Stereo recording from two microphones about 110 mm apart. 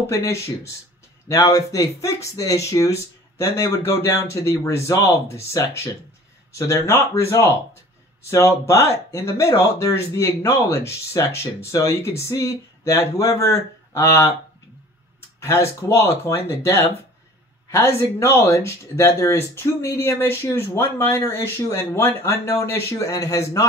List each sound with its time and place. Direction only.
0.0 s speech: 25° left (ahead or behind)
15.4 s speech: 25° left (ahead or behind)